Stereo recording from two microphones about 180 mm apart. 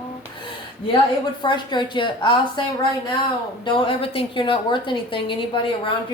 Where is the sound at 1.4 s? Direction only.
25° left (ahead or behind).